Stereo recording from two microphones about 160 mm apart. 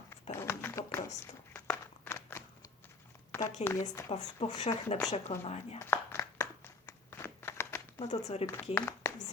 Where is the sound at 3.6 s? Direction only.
45° left (ahead or behind).